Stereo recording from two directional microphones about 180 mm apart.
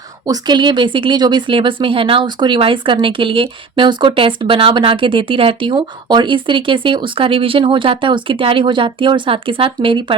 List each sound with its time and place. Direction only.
0.3 s speech: 25° right (ahead or behind)